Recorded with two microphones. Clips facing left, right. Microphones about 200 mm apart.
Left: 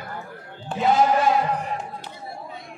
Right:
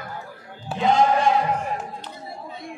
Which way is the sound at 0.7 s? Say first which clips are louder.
Even; 5° right (ahead or behind).